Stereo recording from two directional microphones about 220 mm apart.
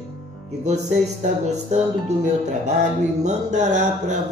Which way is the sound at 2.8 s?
30° right (ahead or behind).